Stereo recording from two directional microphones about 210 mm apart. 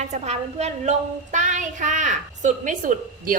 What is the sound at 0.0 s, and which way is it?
A woman's voice, 35° right (ahead or behind).